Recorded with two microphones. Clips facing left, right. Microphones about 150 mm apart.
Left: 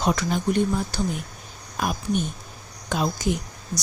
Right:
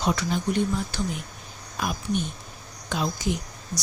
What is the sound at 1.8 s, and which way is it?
Speech, 45° left (ahead or behind).